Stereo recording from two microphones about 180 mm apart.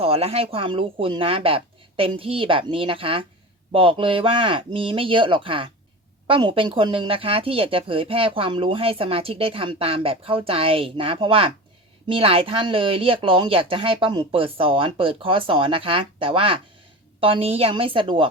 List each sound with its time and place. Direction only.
0.0 s speech: 35° right (ahead or behind)